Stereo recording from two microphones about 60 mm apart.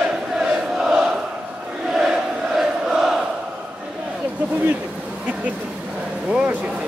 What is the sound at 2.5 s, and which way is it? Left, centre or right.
Chant, centre.